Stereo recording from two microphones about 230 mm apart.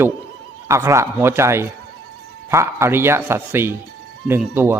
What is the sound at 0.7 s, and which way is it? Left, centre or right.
A man's voice, centre.